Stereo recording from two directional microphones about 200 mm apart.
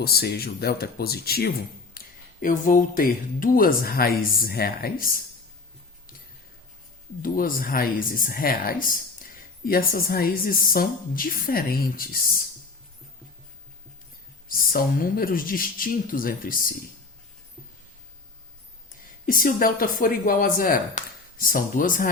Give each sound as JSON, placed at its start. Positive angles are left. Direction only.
{"t": 0.0, "sound": "speech", "side_deg": 50}
{"t": 7.2, "sound": "speech", "side_deg": 45}
{"t": 14.4, "sound": "speech", "side_deg": 45}
{"t": 19.2, "sound": "speech", "side_deg": 45}